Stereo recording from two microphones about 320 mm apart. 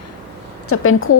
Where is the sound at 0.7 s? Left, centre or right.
Left.